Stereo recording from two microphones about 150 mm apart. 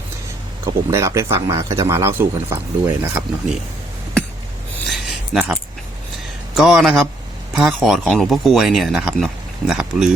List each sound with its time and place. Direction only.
0.6 s speech: 20° right (ahead or behind)
4.9 s a sound: centre (ahead or behind)
6.6 s speech: centre (ahead or behind)